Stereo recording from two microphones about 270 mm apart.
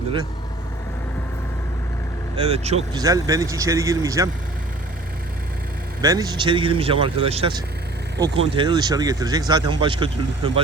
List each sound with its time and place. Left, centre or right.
2.3 s speech: right
6.0 s speech: centre